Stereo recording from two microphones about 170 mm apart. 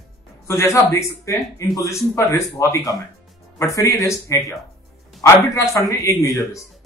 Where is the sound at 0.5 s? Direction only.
15° left (ahead or behind).